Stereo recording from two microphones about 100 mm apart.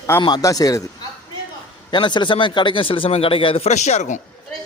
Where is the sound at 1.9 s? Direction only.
50° left (ahead or behind); by 3.7 s 70° left (ahead or behind).